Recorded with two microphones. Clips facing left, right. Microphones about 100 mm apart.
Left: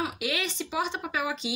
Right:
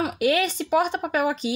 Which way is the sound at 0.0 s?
50° right (ahead or behind).